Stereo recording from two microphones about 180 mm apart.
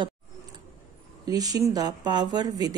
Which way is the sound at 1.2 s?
20° right (ahead or behind).